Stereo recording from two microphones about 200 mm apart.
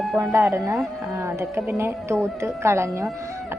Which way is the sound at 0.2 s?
15° right (ahead or behind).